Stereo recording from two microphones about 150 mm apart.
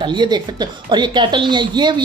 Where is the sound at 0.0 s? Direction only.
30° right (ahead or behind).